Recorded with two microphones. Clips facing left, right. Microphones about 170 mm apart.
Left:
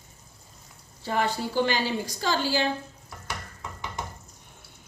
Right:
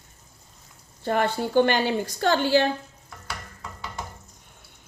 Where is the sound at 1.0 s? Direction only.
55° right (ahead or behind).